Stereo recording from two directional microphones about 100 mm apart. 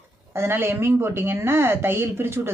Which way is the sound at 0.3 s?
25° right (ahead or behind).